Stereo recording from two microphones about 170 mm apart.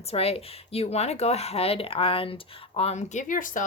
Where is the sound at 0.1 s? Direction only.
35° left (ahead or behind).